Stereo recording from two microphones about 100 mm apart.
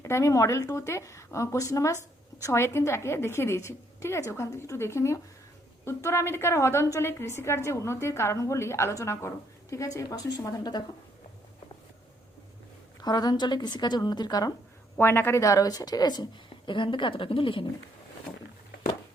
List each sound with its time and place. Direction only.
0.0 s a woman's voice: 30° left (ahead or behind)
13.0 s speech: 40° left (ahead or behind)
14.9 s a woman's voice: 20° left (ahead or behind); by 16.2 s 45° left (ahead or behind)
16.6 s a woman's voice: 55° left (ahead or behind)